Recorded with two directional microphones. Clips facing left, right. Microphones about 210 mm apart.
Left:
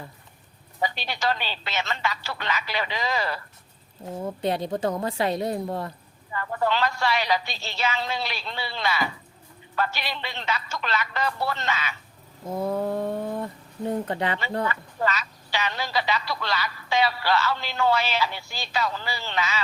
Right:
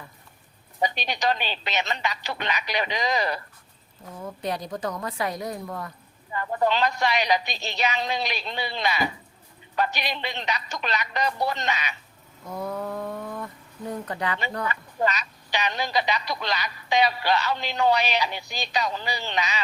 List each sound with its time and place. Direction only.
0.8 s speech: 15° right (ahead or behind)
4.0 s a woman's voice: 30° left (ahead or behind)
6.3 s speech: 20° right (ahead or behind)
12.5 s speech: 25° left (ahead or behind)
14.7 s speech: 20° right (ahead or behind)